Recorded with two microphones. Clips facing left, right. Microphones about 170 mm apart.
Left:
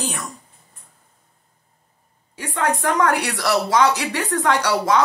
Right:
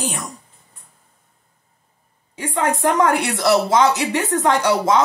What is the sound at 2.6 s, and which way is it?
Speech, 20° right (ahead or behind).